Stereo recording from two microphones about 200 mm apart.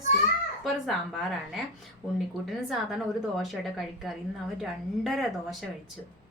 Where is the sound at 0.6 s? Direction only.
Centre (ahead or behind).